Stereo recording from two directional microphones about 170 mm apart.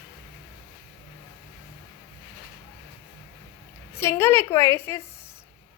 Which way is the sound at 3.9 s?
15° left (ahead or behind).